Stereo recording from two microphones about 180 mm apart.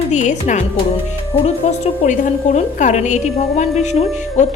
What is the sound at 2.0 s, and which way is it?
A woman's voice, 40° left (ahead or behind).